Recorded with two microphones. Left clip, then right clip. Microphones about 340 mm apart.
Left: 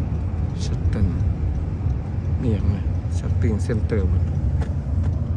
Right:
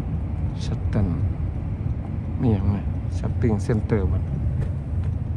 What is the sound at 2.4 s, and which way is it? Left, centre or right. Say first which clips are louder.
Speech: right 2 dB; centre.